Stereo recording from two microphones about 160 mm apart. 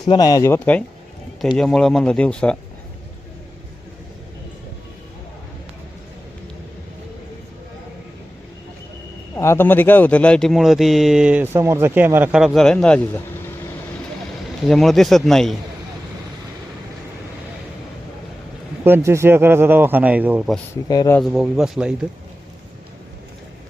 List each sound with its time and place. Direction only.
0.1 s speech: 25° left (ahead or behind); by 2.6 s 5° left (ahead or behind)
9.3 s speech: 15° left (ahead or behind)
14.7 s speech: centre (ahead or behind)
18.9 s speech: 15° right (ahead or behind)
20.8 s speech: 25° left (ahead or behind)
21.2 s speech: centre (ahead or behind)